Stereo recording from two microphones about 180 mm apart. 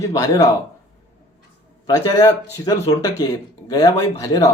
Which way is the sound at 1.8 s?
20° left (ahead or behind).